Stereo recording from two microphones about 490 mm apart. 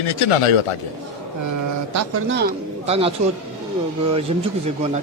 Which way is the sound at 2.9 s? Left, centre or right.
Centre.